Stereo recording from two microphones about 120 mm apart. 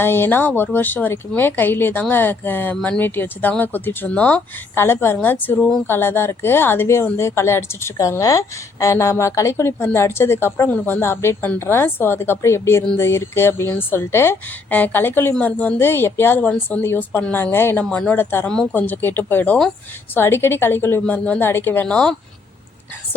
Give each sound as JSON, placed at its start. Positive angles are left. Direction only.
{"t": 0.0, "sound": "speech", "side_deg": 20}
{"t": 17.8, "sound": "speech", "side_deg": 10}